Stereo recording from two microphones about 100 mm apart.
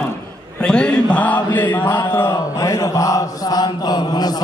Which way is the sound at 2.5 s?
35° left (ahead or behind).